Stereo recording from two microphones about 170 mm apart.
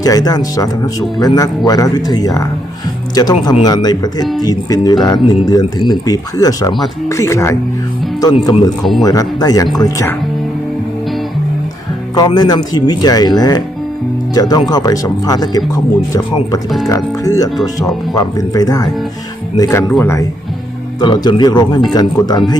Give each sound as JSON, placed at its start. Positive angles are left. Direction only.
{"t": 0.0, "sound": "speech", "side_deg": 20}
{"t": 8.8, "sound": "speech", "side_deg": 0}
{"t": 9.0, "sound": "speech", "side_deg": 20}
{"t": 12.1, "sound": "speech", "side_deg": 25}
{"t": 16.6, "sound": "speech", "side_deg": 0}
{"t": 16.9, "sound": "speech", "side_deg": 20}
{"t": 19.9, "sound": "speech", "side_deg": 10}
{"t": 21.0, "sound": "speech", "side_deg": 25}